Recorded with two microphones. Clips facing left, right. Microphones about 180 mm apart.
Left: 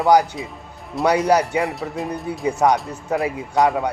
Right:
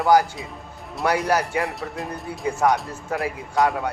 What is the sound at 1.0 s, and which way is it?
Speech, centre (ahead or behind).